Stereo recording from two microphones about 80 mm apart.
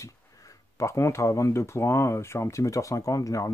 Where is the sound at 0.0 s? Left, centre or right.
Left.